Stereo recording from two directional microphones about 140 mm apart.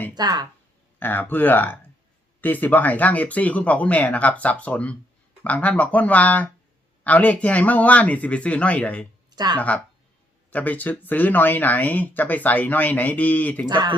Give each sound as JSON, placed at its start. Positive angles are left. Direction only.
{"t": 0.1, "sound": "speech", "side_deg": -30}
{"t": 0.9, "sound": "speech", "side_deg": 10}
{"t": 9.3, "sound": "speech", "side_deg": -30}
{"t": 9.6, "sound": "speech", "side_deg": 10}
{"t": 13.7, "sound": "speech", "side_deg": -30}